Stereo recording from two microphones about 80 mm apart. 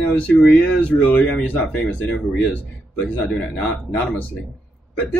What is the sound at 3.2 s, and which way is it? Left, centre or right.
A man's voice, centre.